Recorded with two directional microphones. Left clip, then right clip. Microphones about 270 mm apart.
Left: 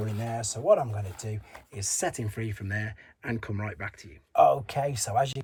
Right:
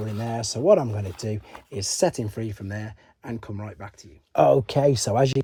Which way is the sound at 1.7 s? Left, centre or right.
Centre.